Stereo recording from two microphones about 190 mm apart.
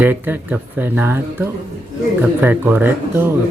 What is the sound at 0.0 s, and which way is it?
Speech, 10° right (ahead or behind).